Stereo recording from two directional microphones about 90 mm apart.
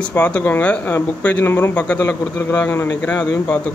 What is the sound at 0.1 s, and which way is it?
A man's voice, 20° left (ahead or behind).